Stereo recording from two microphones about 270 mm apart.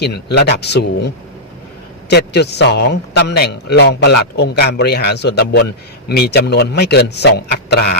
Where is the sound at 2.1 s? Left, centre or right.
Left.